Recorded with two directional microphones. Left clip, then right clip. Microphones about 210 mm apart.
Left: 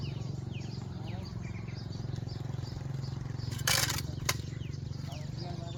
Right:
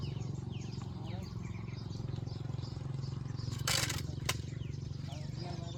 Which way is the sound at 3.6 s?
20° left (ahead or behind).